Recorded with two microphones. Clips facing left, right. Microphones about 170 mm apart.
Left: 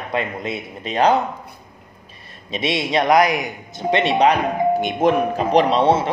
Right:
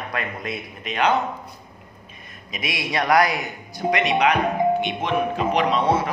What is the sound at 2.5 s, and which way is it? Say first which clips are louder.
Speech: left 7 dB; 25° left (ahead or behind).